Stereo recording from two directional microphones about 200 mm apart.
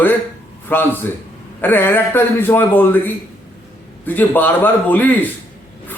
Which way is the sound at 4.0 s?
10° left (ahead or behind).